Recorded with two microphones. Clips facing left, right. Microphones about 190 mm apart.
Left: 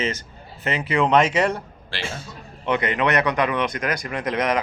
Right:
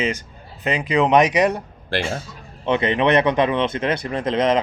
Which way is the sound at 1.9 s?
50° right (ahead or behind).